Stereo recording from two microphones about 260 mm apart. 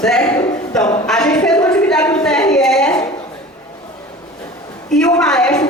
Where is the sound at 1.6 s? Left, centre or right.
Centre.